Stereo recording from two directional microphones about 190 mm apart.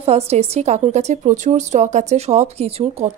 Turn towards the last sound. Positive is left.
turn(degrees=-35)  # may be behind; listen again after turning